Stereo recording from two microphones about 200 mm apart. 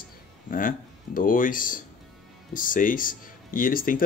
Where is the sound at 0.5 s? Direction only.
45° left (ahead or behind).